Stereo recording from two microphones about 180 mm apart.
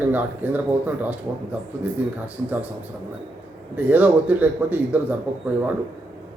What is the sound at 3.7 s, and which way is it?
A man's voice, 10° right (ahead or behind).